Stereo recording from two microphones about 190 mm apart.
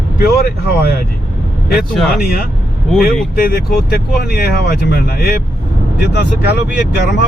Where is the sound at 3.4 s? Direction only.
55° left (ahead or behind).